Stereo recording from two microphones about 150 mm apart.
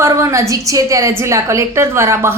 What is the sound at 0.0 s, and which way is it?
A woman's voice, 20° right (ahead or behind).